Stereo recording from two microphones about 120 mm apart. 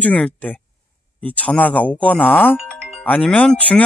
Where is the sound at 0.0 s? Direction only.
10° left (ahead or behind).